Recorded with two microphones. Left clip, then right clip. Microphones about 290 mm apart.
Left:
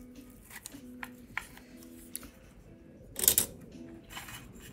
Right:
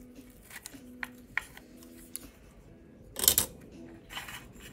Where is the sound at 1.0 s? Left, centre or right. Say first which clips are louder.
Right 5 dB; centre.